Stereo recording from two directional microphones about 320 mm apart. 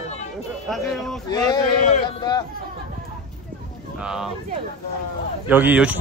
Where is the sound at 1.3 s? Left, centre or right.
Centre.